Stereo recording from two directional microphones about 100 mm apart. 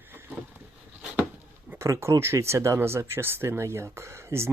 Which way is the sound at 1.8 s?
30° right (ahead or behind).